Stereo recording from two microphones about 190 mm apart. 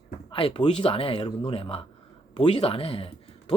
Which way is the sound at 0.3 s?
30° left (ahead or behind).